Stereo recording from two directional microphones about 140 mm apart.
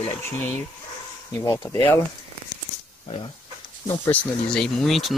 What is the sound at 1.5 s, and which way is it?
Speech, 25° left (ahead or behind).